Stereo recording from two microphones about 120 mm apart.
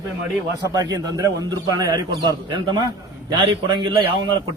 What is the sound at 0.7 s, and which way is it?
Speech, 30° right (ahead or behind).